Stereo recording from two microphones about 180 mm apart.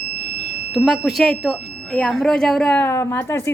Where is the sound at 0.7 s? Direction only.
Centre (ahead or behind); by 3.5 s 15° left (ahead or behind).